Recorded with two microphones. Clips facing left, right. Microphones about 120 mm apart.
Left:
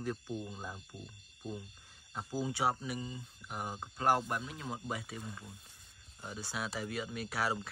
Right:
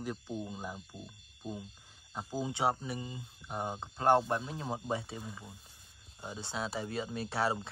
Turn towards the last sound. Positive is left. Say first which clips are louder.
# right 3 dB
turn(degrees=-25)  # may be behind; listen again after turning